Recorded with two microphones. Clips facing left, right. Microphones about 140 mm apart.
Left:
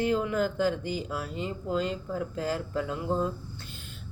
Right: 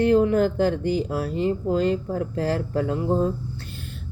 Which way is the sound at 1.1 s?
40° right (ahead or behind).